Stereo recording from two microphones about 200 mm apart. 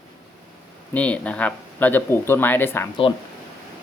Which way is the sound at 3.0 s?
25° left (ahead or behind).